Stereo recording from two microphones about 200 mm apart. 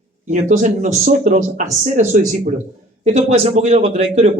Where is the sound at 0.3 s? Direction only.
35° right (ahead or behind).